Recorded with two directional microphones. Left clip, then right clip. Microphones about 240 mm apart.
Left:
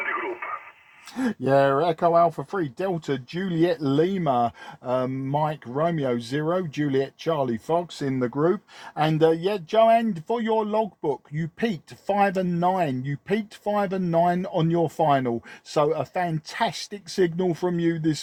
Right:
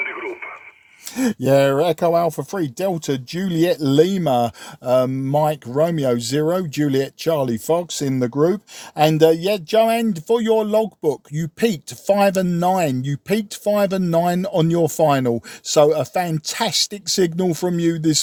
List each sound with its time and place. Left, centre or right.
0.0 s radio: centre
1.1 s speech: right